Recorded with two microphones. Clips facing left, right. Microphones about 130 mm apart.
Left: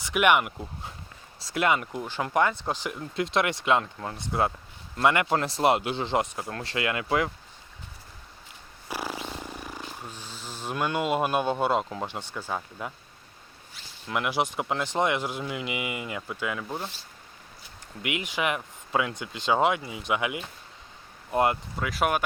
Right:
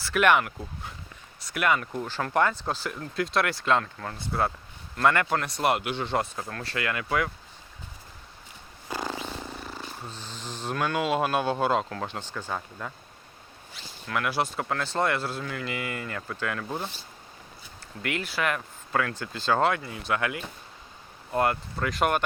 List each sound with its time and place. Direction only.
0.0 s speech: 15° left (ahead or behind)
1.4 s speech: 25° left (ahead or behind)
8.9 s speech: 10° left (ahead or behind)
14.1 s speech: 15° left (ahead or behind); by 16.9 s centre (ahead or behind)
18.0 s speech: 15° left (ahead or behind)
21.8 s speech: 5° left (ahead or behind)